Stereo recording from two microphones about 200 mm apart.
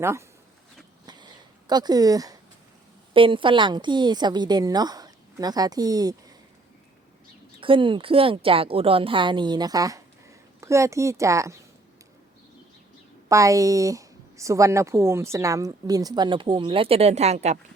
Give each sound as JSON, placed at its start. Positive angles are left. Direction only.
{"t": 0.0, "sound": "speech", "side_deg": -15}
{"t": 1.0, "sound": "a sound", "side_deg": -20}
{"t": 3.1, "sound": "a woman's voice", "side_deg": -25}
{"t": 7.6, "sound": "a woman's voice", "side_deg": -25}
{"t": 13.2, "sound": "speech", "side_deg": -15}